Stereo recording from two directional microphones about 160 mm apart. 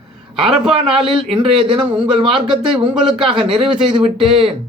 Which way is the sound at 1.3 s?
30° right (ahead or behind).